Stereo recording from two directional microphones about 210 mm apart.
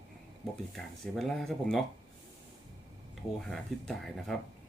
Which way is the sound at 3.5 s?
Centre (ahead or behind).